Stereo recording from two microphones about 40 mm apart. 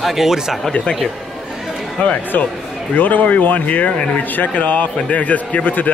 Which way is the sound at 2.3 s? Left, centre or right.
Left.